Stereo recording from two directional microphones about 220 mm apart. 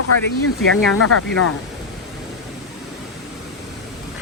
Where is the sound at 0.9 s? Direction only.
90° left.